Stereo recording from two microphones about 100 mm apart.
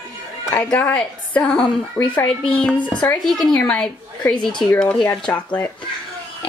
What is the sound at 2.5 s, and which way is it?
A woman's voice, 10° left (ahead or behind).